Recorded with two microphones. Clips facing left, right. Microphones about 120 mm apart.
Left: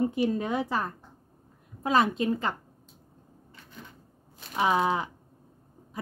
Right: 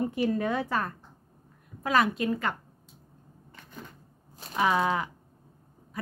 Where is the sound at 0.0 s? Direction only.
20° left (ahead or behind).